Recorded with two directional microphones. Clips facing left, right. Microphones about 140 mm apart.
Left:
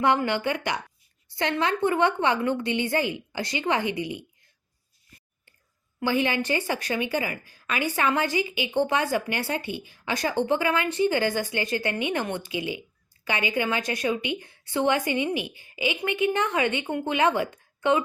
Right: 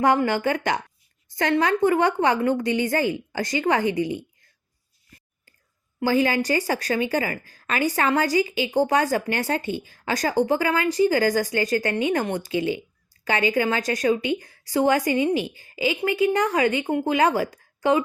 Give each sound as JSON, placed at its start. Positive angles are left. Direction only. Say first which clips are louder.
{"t": 0.0, "sound": "a woman's voice", "louder": "right 3 dB", "side_deg": -40}
{"t": 1.3, "sound": "a woman's voice", "louder": "right 4 dB", "side_deg": -45}
{"t": 6.0, "sound": "a woman's voice", "louder": "right 4 dB", "side_deg": -40}
{"t": 17.5, "sound": "a sound", "louder": "right 2 dB", "side_deg": -35}